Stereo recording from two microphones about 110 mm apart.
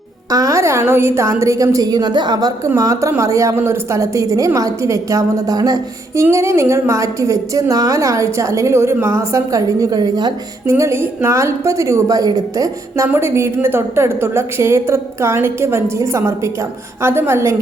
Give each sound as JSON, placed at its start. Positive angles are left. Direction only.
{"t": 0.3, "sound": "a woman's voice", "side_deg": -30}
{"t": 2.6, "sound": "a woman's voice", "side_deg": -30}
{"t": 10.7, "sound": "a woman's voice", "side_deg": -25}